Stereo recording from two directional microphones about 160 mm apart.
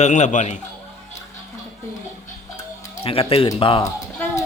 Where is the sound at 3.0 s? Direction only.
35° left (ahead or behind).